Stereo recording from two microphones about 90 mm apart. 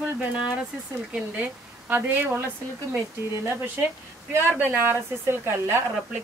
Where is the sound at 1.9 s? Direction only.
25° right (ahead or behind).